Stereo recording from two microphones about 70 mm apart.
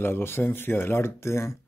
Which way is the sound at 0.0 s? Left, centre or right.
Left.